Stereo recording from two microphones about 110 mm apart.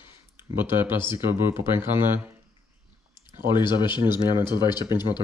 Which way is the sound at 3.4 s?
45° left (ahead or behind).